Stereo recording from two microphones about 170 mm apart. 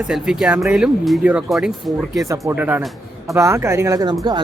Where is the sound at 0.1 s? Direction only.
5° right (ahead or behind).